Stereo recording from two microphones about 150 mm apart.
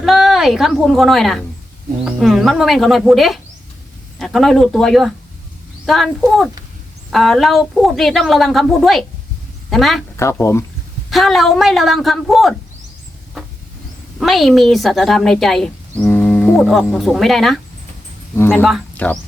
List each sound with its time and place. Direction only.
0.0 s a woman's voice: centre (ahead or behind)
10.2 s speech: 20° left (ahead or behind)
11.1 s a woman's voice: centre (ahead or behind)
14.2 s a woman's voice: centre (ahead or behind)
16.0 s a sound: 15° left (ahead or behind)
16.6 s a woman's voice: centre (ahead or behind)
18.3 s speech: 15° left (ahead or behind)